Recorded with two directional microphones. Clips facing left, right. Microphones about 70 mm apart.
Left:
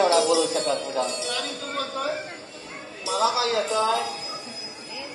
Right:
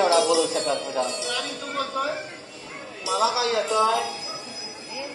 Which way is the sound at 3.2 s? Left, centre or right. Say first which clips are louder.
Even; left.